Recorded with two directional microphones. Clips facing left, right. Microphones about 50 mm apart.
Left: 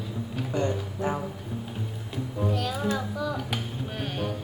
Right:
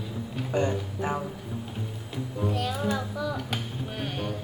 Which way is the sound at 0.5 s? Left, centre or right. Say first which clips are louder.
Right 2 dB; right.